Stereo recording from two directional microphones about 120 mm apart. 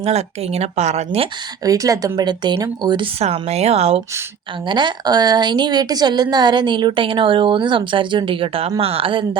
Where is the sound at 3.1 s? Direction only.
60° right (ahead or behind).